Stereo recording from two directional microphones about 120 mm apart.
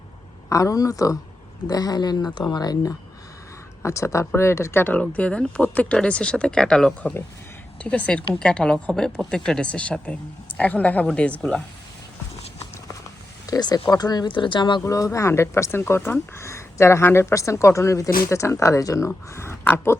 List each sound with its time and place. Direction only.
0.5 s speech: 25° left (ahead or behind); by 11.3 s 10° left (ahead or behind)
13.5 s speech: 35° left (ahead or behind)
14.8 s speech: 25° left (ahead or behind)